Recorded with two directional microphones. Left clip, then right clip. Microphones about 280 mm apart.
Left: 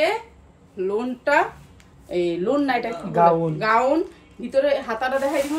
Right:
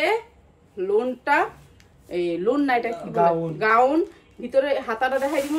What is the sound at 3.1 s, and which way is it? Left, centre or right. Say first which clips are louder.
Speech: left 4 dB; left.